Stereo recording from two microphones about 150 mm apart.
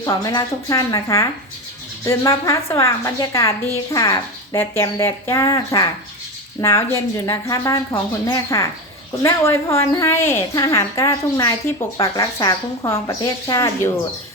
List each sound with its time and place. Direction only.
0.0 s a woman's voice: 25° left (ahead or behind)